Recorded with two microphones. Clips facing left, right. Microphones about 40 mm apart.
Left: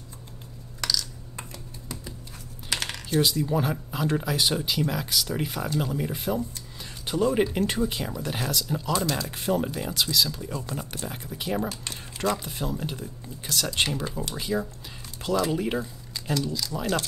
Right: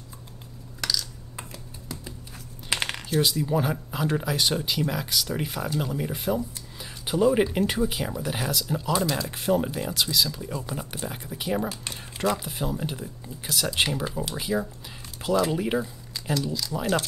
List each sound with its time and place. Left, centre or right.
0.7 s computer keyboard: centre
2.7 s typing: right
3.1 s speech: centre